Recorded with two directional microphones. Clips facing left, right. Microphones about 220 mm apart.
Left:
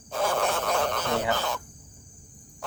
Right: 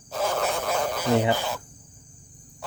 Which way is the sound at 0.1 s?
5° right (ahead or behind).